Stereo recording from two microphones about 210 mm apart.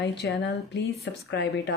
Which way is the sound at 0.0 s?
55° left (ahead or behind).